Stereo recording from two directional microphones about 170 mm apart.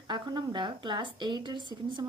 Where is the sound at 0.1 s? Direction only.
25° right (ahead or behind).